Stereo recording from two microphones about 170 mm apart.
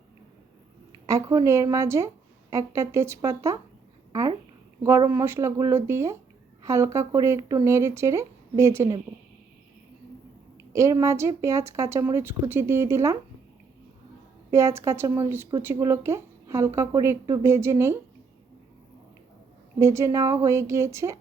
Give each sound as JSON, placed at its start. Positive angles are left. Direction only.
{"t": 1.0, "sound": "speech", "side_deg": -20}
{"t": 4.8, "sound": "speech", "side_deg": -15}
{"t": 10.7, "sound": "speech", "side_deg": -15}
{"t": 14.5, "sound": "speech", "side_deg": -15}
{"t": 19.8, "sound": "speech", "side_deg": -15}